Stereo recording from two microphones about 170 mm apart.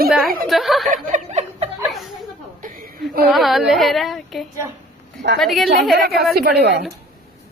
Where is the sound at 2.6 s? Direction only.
55° right (ahead or behind).